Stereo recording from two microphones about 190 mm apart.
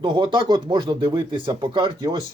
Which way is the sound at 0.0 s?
25° right (ahead or behind).